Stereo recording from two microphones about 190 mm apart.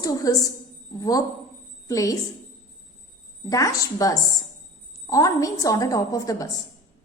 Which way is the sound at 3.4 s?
15° left (ahead or behind).